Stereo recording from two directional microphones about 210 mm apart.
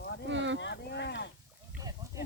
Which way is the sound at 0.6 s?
55° left (ahead or behind).